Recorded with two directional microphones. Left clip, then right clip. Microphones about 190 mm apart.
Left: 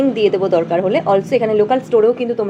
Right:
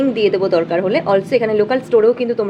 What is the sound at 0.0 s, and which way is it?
A woman's voice, 5° left (ahead or behind).